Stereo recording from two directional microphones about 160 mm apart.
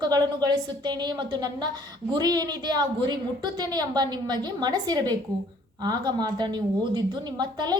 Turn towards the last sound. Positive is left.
turn(degrees=-25)  # may be behind; listen again after turning